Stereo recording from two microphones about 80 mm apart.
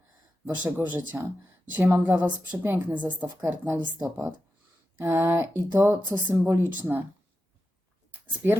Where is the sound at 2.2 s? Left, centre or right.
Centre.